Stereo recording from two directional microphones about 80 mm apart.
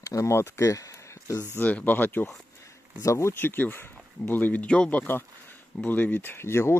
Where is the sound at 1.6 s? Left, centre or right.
Centre.